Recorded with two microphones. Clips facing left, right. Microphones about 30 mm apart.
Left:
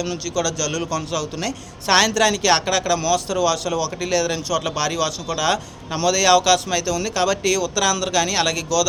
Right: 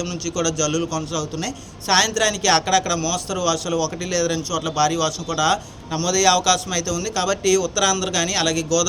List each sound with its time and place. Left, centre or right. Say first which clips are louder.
0.0 s a man's voice: even; left
2.5 s a man's voice: even; centre
4.1 s a man's voice: left 2 dB; left
4.7 s a man's voice: right 2 dB; left
7.8 s speech: left 1 dB; centre